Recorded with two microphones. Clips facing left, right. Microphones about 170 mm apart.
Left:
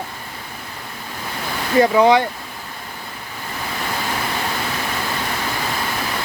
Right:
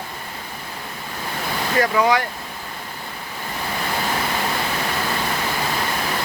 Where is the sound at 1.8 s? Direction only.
25° left (ahead or behind).